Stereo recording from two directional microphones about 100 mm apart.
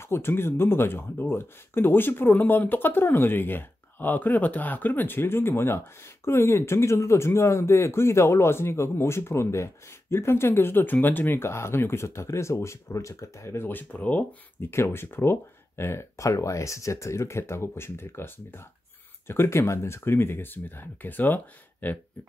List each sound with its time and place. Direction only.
0.0 s speech: 25° left (ahead or behind)